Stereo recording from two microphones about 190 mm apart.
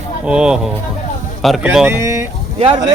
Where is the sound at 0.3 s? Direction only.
5° right (ahead or behind).